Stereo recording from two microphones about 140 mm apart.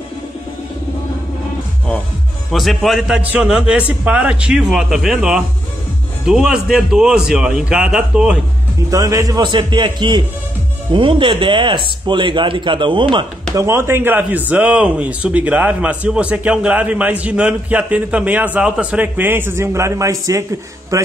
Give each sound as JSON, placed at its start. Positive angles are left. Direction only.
{"t": 2.5, "sound": "a man's voice", "side_deg": 0}
{"t": 8.9, "sound": "speech", "side_deg": -25}
{"t": 13.6, "sound": "a man's voice", "side_deg": -20}
{"t": 20.9, "sound": "mantra", "side_deg": -20}